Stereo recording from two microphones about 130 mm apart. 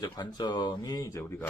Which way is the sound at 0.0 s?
35° left (ahead or behind).